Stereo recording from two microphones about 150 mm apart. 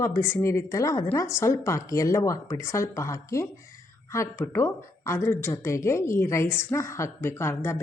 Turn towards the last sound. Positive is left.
turn(degrees=15)  # may be behind; listen again after turning